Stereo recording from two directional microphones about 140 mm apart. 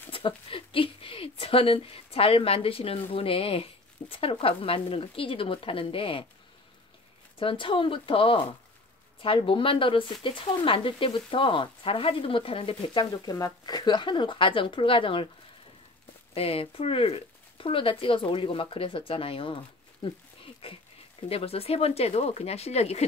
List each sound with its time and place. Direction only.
0.1 s speech: 40° left (ahead or behind)
4.1 s frying: 40° left (ahead or behind)
7.3 s frying: 40° left (ahead or behind)
16.3 s frying: 45° left (ahead or behind)
21.3 s speech: 45° left (ahead or behind)